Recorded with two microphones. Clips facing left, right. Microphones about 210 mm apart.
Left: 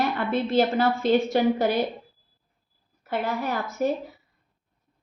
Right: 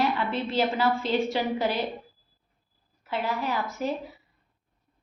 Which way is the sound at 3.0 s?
50° left (ahead or behind).